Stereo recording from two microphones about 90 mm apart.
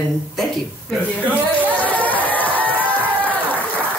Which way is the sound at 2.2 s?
20° left (ahead or behind).